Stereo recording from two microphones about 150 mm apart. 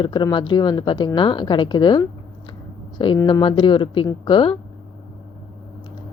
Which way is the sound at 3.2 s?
35° left (ahead or behind).